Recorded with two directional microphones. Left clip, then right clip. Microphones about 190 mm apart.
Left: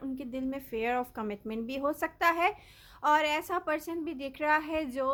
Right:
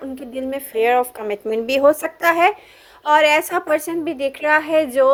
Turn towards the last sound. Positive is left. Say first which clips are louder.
# right 17 dB
turn(degrees=-10)  # may be behind; listen again after turning